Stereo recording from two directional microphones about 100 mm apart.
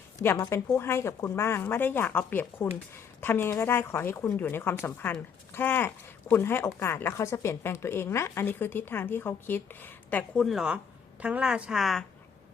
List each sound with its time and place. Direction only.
0.4 s speech: 25° left (ahead or behind)
10.3 s a woman's voice: centre (ahead or behind)